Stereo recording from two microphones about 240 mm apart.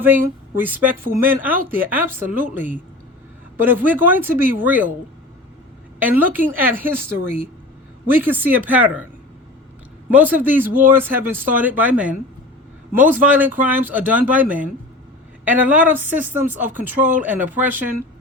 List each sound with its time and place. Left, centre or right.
0.5 s speech: centre
6.1 s speech: centre
10.1 s speech: centre